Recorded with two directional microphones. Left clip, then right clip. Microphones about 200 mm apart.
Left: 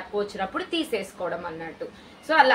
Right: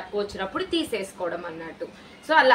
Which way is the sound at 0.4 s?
5° right (ahead or behind).